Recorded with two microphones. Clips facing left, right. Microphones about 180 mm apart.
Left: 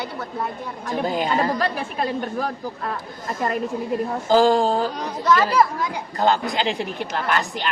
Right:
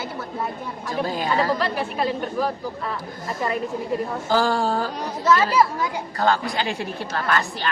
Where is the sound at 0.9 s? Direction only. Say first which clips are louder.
Left 2 dB; 20° left (ahead or behind).